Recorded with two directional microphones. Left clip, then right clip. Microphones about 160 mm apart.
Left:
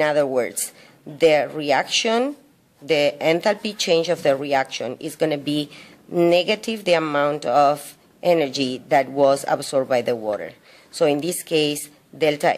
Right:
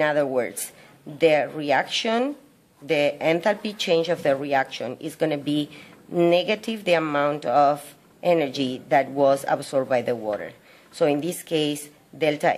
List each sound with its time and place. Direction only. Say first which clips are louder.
0.0 s speech: left 3 dB; 25° left (ahead or behind)